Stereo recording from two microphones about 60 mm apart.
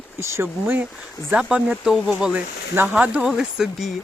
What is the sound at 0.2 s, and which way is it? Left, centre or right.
Speech, right.